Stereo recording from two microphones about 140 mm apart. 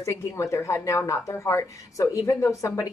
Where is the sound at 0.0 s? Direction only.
20° left (ahead or behind).